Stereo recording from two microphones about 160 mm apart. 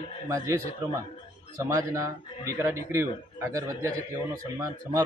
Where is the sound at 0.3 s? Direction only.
20° right (ahead or behind).